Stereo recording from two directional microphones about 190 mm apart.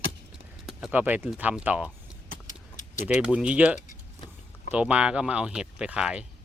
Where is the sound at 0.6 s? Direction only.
5° right (ahead or behind).